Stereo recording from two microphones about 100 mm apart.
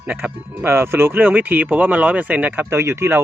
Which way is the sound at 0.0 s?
20° right (ahead or behind).